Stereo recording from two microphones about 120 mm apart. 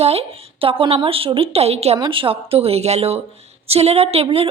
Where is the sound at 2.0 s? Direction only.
45° right (ahead or behind).